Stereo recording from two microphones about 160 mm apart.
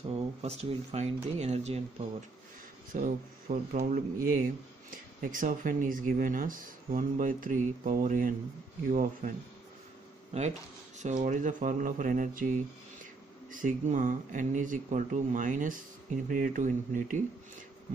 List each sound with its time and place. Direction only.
0.1 s speech: 40° right (ahead or behind)
11.0 s speech: 50° right (ahead or behind)